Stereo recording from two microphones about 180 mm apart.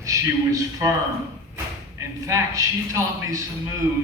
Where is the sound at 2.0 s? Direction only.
15° right (ahead or behind).